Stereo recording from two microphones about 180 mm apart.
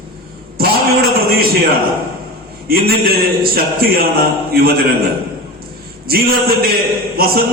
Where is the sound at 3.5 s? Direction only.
55° right (ahead or behind).